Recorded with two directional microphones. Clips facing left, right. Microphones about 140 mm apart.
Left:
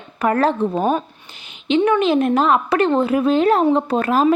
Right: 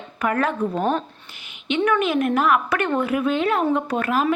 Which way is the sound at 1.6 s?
30° left (ahead or behind).